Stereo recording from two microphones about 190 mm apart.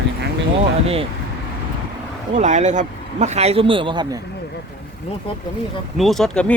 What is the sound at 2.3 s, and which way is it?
Speech, 40° right (ahead or behind).